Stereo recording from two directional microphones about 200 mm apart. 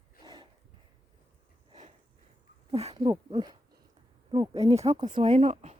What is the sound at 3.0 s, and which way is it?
Speech, 20° right (ahead or behind).